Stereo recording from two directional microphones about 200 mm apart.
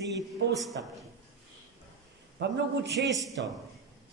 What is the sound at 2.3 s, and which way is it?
Speech, 60° right (ahead or behind).